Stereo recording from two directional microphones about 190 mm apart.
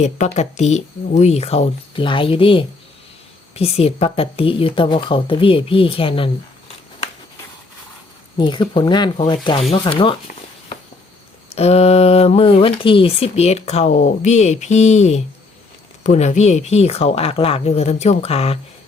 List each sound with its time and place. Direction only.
0.0 s a woman's voice: 35° left (ahead or behind)
8.4 s a woman's voice: 25° left (ahead or behind)
11.5 s speech: 30° left (ahead or behind)